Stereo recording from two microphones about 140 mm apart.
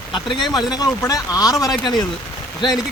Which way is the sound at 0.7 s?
25° left (ahead or behind).